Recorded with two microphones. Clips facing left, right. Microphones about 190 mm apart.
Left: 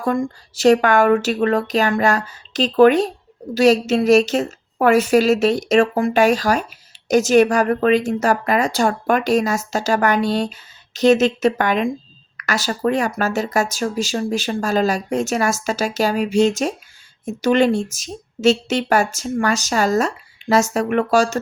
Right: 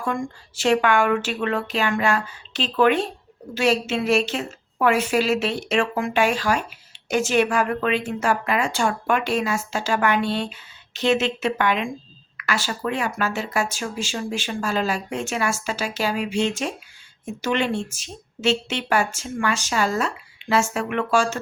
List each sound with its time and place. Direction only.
0.0 s a woman's voice: 35° left (ahead or behind)